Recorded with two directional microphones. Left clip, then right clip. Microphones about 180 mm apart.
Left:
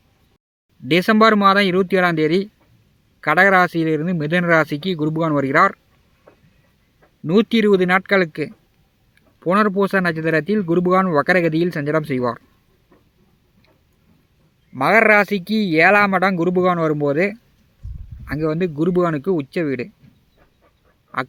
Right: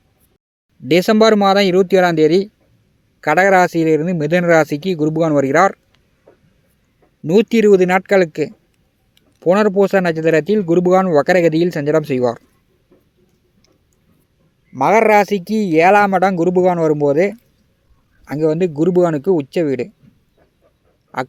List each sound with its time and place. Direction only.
0.9 s speech: 20° right (ahead or behind)
7.9 s speech: 20° right (ahead or behind)
14.8 s speech: 20° right (ahead or behind)